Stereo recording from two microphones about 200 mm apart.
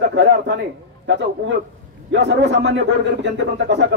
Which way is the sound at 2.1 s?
60° right (ahead or behind).